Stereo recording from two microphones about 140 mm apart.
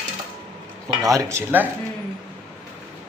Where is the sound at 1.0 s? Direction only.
20° right (ahead or behind).